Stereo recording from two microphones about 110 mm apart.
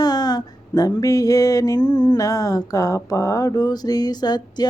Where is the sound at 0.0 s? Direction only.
35° left (ahead or behind).